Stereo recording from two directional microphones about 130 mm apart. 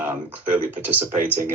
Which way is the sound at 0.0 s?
15° right (ahead or behind).